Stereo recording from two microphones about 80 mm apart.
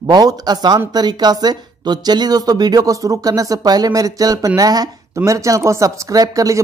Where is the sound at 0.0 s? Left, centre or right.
Right.